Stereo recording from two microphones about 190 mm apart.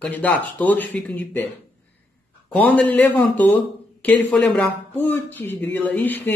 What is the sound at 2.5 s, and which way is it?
A man's voice, 5° left (ahead or behind).